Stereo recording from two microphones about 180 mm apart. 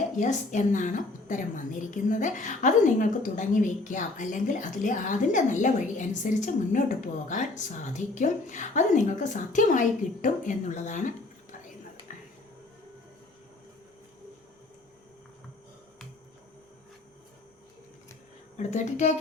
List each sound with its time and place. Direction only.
0.2 s a woman's voice: 45° left (ahead or behind)
12.1 s music: 45° left (ahead or behind)
18.5 s speech: 40° left (ahead or behind)